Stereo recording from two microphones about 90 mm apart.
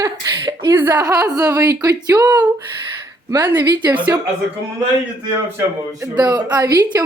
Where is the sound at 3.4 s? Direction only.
20° right (ahead or behind).